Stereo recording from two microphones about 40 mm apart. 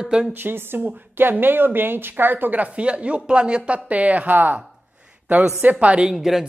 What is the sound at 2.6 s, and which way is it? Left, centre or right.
A woman's voice, right.